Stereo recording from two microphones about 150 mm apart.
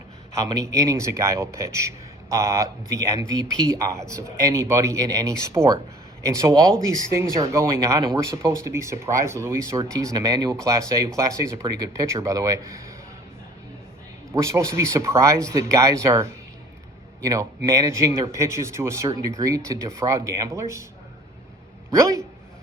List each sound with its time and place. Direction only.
0.4 s speech: 25° right (ahead or behind)
14.3 s a man's voice: 20° right (ahead or behind)
21.9 s speech: 20° right (ahead or behind)